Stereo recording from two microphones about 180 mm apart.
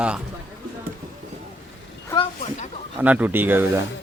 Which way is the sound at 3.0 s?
10° right (ahead or behind).